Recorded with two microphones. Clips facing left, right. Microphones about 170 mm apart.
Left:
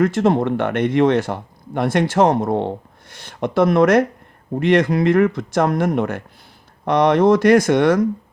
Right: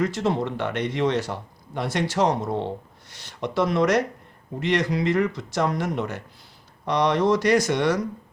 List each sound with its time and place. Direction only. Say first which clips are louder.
0.0 s a man's voice: left 7 dB; 55° left (ahead or behind)